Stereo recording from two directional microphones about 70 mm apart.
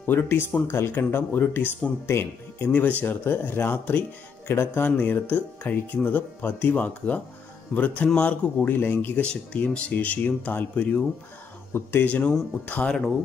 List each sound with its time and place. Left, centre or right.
0.0 s speech: left
9.2 s speech: centre; by 12.1 s left
12.1 s speech: left
12.8 s speech: centre